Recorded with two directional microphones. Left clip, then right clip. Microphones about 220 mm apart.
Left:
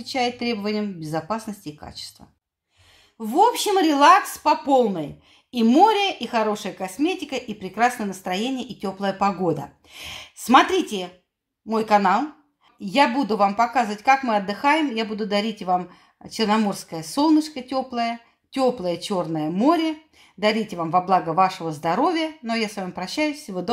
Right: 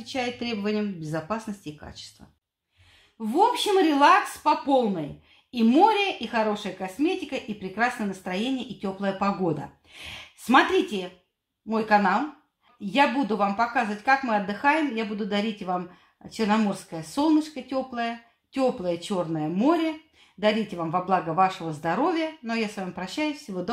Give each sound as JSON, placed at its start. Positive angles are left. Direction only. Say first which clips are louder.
{"t": 0.0, "sound": "speech", "louder": "left 6 dB", "side_deg": 25}
{"t": 3.2, "sound": "speech", "louder": "left 4 dB", "side_deg": 35}